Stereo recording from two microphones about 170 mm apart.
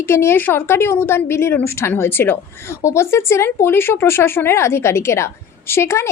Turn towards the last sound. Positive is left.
turn(degrees=15)  # may be behind; listen again after turning